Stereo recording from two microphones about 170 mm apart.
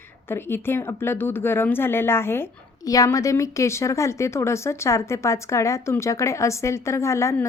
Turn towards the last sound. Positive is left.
turn(degrees=15)  # may be behind; listen again after turning